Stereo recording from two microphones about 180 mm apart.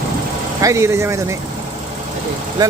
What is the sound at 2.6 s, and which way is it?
Speech, 20° right (ahead or behind).